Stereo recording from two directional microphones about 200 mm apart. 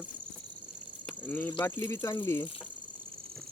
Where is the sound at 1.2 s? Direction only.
10° left (ahead or behind).